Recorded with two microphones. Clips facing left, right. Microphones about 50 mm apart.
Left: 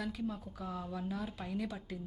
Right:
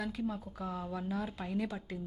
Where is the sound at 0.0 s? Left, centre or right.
Centre.